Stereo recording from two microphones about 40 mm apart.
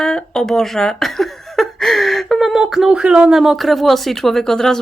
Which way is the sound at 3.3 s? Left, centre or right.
Centre.